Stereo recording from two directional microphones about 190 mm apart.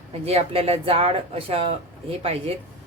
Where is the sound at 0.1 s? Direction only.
30° right (ahead or behind).